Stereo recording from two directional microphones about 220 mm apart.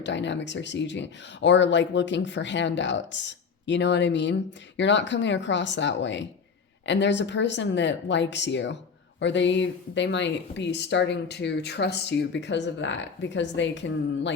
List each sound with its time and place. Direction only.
0.0 s speech: 55° left (ahead or behind)